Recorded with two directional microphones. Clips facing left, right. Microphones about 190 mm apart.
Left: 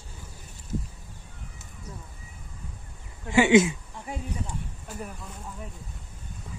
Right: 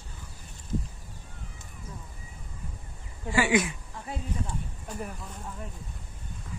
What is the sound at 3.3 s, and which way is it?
Speech, 25° left (ahead or behind).